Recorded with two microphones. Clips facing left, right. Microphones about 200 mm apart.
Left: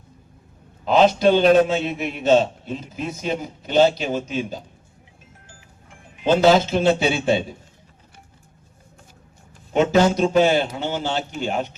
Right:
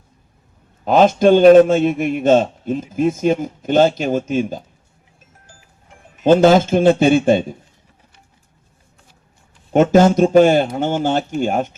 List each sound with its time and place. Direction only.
0.9 s a man's voice: 50° right (ahead or behind)
6.1 s a man's voice: 50° right (ahead or behind)
9.7 s a man's voice: 45° right (ahead or behind)